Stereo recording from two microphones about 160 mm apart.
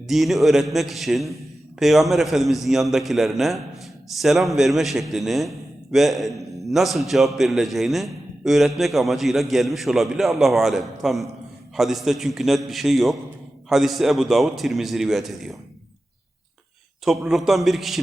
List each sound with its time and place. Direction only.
0.1 s a man's voice: centre (ahead or behind)
17.1 s a man's voice: centre (ahead or behind)